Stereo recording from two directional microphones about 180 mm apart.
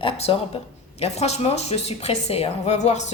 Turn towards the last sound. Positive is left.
turn(degrees=40)  # may be behind; listen again after turning